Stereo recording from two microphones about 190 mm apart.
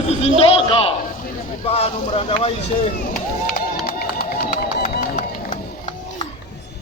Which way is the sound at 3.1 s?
50° left (ahead or behind).